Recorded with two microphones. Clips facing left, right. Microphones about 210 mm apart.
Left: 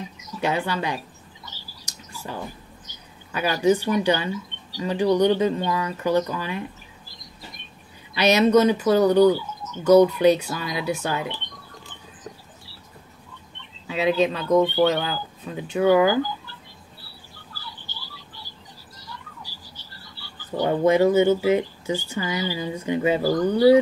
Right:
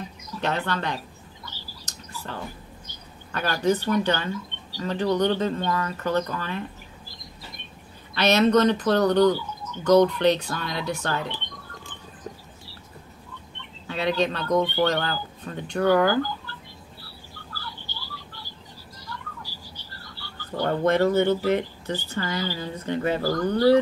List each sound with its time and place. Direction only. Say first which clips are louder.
0.2 s a sound: left 3 dB; 15° left (ahead or behind)
3.3 s speech: left 3 dB; 10° left (ahead or behind)
8.1 s speech: left 2 dB; 10° left (ahead or behind)
13.8 s speech: left 3 dB; 5° left (ahead or behind)
19.4 s speech: right 2 dB; 15° left (ahead or behind)